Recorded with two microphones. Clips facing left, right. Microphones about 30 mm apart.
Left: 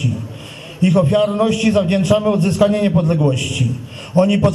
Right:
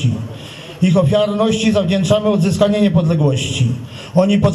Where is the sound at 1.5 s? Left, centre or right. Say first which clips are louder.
Even; right.